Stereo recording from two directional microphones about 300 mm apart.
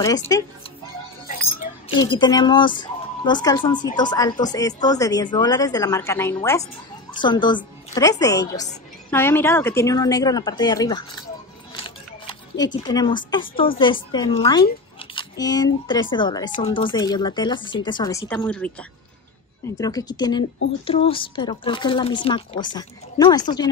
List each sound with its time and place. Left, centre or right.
0.0 s speech: centre
1.9 s speech: centre